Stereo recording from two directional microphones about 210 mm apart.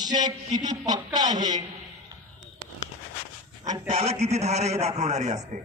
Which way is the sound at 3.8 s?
30° right (ahead or behind).